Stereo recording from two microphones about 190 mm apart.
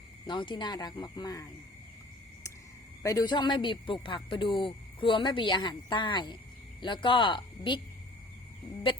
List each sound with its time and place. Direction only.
0.3 s speech: 25° left (ahead or behind)
3.0 s speech: 15° left (ahead or behind)